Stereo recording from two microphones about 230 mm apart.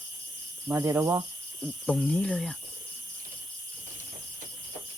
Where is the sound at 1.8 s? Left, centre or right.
Centre.